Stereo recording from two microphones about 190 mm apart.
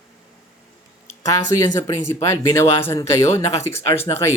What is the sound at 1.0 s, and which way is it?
Speech, 15° left (ahead or behind).